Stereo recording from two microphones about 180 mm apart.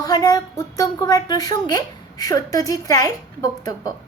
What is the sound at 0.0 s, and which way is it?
A woman's voice, 20° left (ahead or behind).